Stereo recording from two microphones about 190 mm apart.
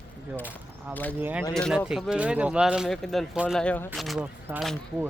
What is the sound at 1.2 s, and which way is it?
Speech, 10° right (ahead or behind).